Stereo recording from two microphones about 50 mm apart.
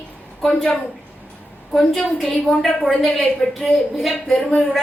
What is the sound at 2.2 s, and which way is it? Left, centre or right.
A woman's voice, centre.